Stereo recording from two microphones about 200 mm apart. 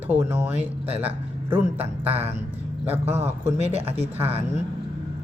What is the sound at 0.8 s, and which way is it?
Speech, 30° right (ahead or behind).